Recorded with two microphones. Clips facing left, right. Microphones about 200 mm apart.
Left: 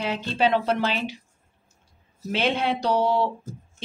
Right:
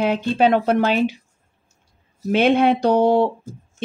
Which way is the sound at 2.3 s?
55° right (ahead or behind).